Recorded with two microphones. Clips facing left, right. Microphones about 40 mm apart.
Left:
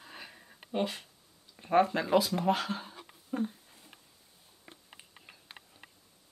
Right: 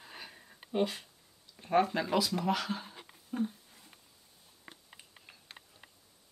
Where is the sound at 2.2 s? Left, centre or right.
Centre.